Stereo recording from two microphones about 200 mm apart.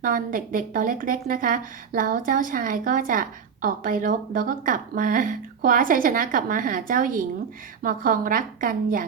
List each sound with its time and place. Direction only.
0.0 s a woman's voice: 45° right (ahead or behind)